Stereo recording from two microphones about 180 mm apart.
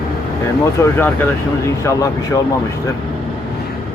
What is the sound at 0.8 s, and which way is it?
Speech, 15° left (ahead or behind).